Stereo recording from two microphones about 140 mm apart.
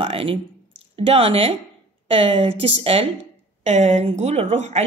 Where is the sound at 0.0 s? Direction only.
40° right (ahead or behind).